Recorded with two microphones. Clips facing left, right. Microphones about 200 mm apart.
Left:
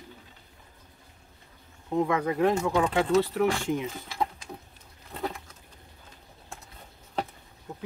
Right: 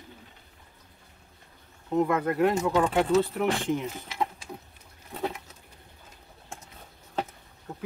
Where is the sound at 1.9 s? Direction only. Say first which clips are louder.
Right 1 dB; 5° right (ahead or behind).